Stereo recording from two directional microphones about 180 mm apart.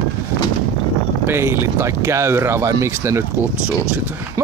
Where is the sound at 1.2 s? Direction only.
15° right (ahead or behind).